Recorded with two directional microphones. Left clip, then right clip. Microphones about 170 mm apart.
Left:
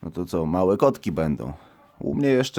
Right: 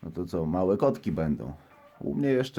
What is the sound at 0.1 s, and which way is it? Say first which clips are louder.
Speech: left 5 dB; 40° left (ahead or behind).